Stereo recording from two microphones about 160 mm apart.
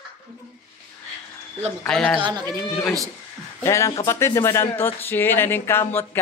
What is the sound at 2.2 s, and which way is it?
Speech, 25° right (ahead or behind).